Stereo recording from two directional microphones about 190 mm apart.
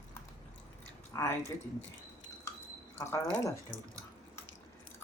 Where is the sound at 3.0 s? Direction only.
15° left (ahead or behind).